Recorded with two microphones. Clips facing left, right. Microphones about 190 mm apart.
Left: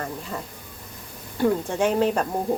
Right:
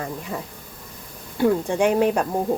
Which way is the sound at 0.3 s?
5° right (ahead or behind).